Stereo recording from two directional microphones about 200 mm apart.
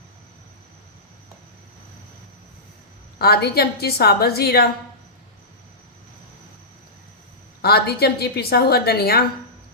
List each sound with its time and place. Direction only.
3.2 s a woman's voice: 50° left (ahead or behind)
7.6 s a woman's voice: 50° left (ahead or behind)